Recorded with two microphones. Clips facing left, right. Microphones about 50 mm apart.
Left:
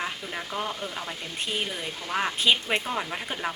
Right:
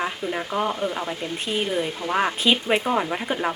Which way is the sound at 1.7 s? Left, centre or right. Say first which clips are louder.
Right 7 dB; centre.